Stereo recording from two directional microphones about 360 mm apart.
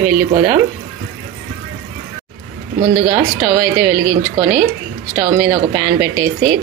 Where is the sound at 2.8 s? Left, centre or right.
Right.